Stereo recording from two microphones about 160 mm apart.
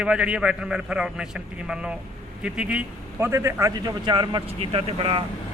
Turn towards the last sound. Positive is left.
turn(degrees=-35)  # may be behind; listen again after turning